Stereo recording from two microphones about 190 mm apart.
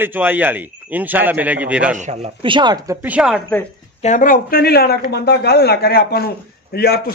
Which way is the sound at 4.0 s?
40° left (ahead or behind).